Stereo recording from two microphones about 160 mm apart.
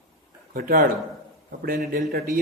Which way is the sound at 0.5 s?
60° right (ahead or behind).